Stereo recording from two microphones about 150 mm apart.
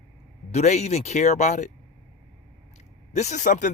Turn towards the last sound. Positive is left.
turn(degrees=60)  # may be behind; listen again after turning